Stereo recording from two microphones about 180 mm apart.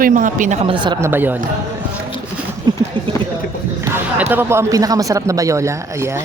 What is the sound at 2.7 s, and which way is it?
Speech, 25° right (ahead or behind).